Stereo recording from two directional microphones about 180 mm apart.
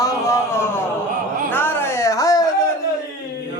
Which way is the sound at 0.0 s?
15° left (ahead or behind).